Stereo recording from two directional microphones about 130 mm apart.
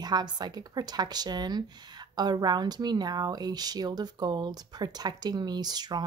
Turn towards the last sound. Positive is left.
turn(degrees=-30)  # may be behind; listen again after turning